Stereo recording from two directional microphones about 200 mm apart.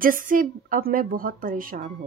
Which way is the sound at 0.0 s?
45° right (ahead or behind).